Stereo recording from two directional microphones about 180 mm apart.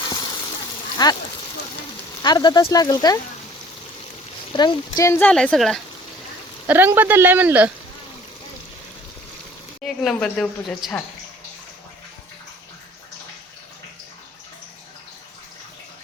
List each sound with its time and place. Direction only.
1.0 s speech: 25° left (ahead or behind)
2.2 s speech: 25° left (ahead or behind)
4.5 s speech: 25° left (ahead or behind)
5.3 s a woman's voice: 5° left (ahead or behind)
6.7 s speech: 10° right (ahead or behind)
9.8 s a woman's voice: 5° left (ahead or behind)